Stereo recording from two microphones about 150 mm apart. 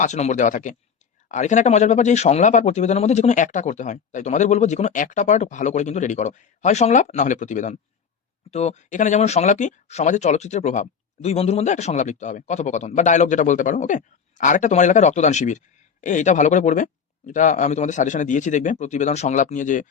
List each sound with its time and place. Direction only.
0.0 s a man's voice: 50° left (ahead or behind)